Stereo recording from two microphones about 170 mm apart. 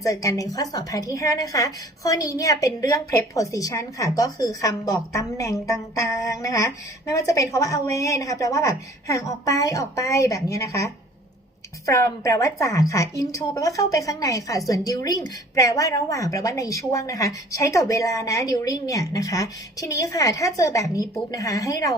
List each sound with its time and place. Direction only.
0.0 s a woman's voice: 20° left (ahead or behind)